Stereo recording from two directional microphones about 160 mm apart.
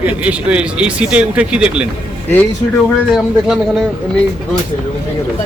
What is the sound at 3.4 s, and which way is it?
Speech, 5° right (ahead or behind).